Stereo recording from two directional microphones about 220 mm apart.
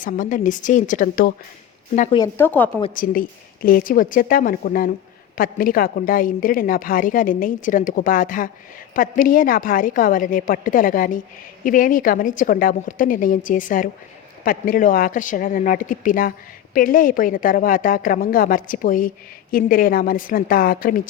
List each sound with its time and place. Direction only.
0.0 s a woman's voice: 35° left (ahead or behind)
2.1 s speech: 15° left (ahead or behind)
2.9 s a woman's voice: 40° left (ahead or behind)